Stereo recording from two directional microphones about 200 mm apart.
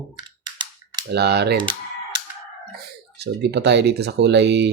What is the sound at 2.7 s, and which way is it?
Speech, 55° right (ahead or behind).